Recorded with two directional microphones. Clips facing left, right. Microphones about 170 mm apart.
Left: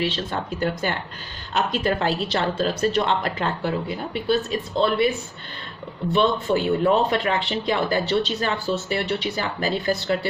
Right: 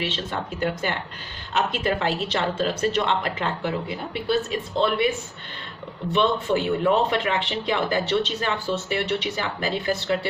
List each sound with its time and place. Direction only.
0.6 s a man's voice: 40° left (ahead or behind)
6.1 s a man's voice: 35° left (ahead or behind)